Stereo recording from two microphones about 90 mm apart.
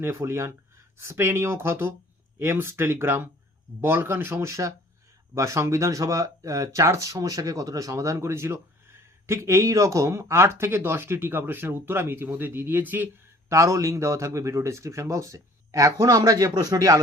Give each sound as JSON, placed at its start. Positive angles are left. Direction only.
{"t": 0.0, "sound": "a man's voice", "side_deg": -30}
{"t": 13.5, "sound": "a man's voice", "side_deg": -35}